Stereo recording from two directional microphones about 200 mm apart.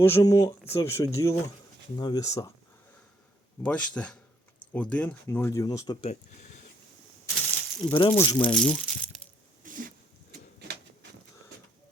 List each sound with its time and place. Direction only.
0.0 s speech: 15° left (ahead or behind)
3.6 s speech: 5° left (ahead or behind)
6.0 s speech: 35° left (ahead or behind)
7.3 s a sound: centre (ahead or behind)
7.9 s speech: 25° left (ahead or behind)
8.4 s speech: 5° left (ahead or behind)
9.6 s a sound: 40° right (ahead or behind)